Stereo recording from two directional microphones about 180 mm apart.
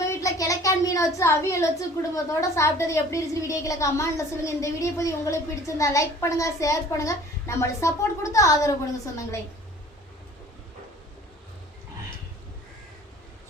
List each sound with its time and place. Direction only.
0.1 s a woman's voice: 20° left (ahead or behind)